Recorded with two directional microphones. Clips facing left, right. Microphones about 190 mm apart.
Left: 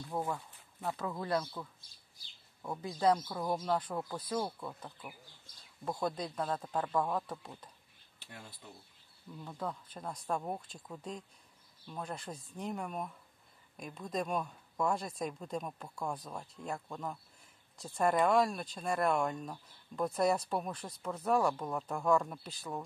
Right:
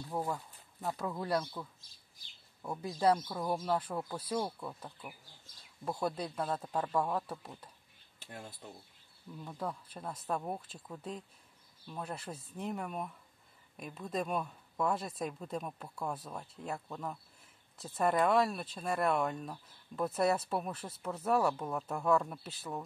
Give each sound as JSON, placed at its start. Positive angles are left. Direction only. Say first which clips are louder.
{"t": 0.1, "sound": "speech", "louder": "even", "side_deg": -10}
{"t": 8.2, "sound": "speech", "louder": "right 4 dB", "side_deg": -45}
{"t": 9.4, "sound": "speech", "louder": "even", "side_deg": -5}